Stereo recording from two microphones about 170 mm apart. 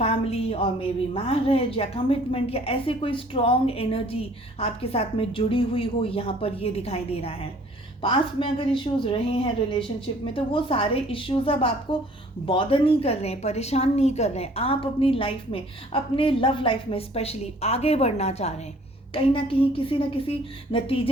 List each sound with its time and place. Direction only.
0.0 s a woman's voice: 35° left (ahead or behind)